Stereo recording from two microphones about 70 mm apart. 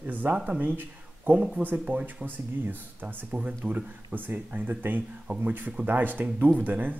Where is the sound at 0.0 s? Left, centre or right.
Right.